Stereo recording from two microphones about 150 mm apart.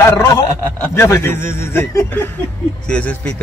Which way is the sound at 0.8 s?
15° left (ahead or behind).